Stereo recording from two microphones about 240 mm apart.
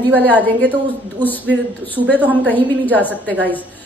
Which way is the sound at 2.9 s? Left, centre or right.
Centre.